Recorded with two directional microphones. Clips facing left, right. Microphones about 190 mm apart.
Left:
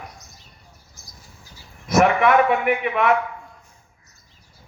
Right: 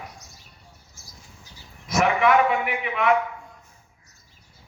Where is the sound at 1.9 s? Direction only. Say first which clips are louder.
Left 3 dB; 55° left (ahead or behind).